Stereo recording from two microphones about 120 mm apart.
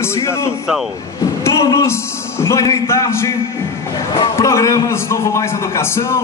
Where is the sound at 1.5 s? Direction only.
25° left (ahead or behind).